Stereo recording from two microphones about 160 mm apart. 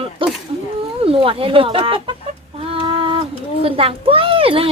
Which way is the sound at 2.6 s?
35° right (ahead or behind).